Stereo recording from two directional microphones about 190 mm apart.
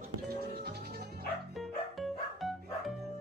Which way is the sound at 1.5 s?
Centre (ahead or behind).